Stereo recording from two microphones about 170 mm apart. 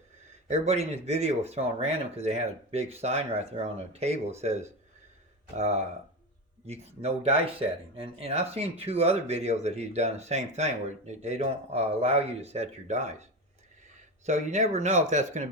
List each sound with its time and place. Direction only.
0.4 s speech: 40° right (ahead or behind)
14.3 s speech: 40° right (ahead or behind)